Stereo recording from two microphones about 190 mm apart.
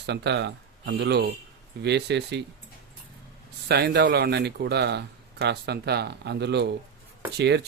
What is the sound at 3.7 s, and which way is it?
Speech, 60° right (ahead or behind).